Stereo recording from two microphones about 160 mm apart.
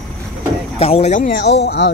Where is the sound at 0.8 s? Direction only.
40° left (ahead or behind); by 1.5 s 60° left (ahead or behind).